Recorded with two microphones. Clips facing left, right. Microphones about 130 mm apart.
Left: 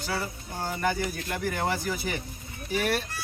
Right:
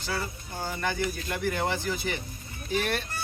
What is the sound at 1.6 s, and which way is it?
Speech, 10° left (ahead or behind).